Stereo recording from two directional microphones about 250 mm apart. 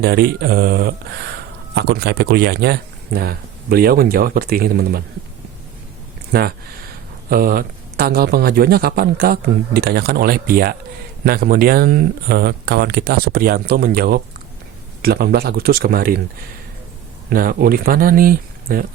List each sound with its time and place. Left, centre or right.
0.0 s a man's voice: right
7.3 s a man's voice: right
17.2 s a man's voice: right